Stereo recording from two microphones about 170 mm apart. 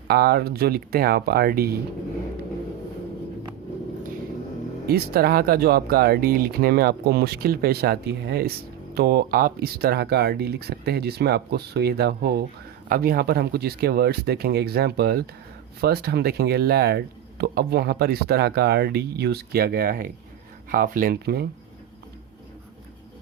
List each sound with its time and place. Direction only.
0.1 s speech: 65° right (ahead or behind)
4.9 s speech: 65° right (ahead or behind)